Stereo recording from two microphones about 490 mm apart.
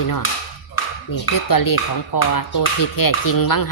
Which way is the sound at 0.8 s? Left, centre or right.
Left.